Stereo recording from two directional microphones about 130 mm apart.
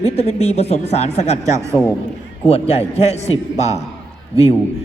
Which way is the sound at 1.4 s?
25° right (ahead or behind).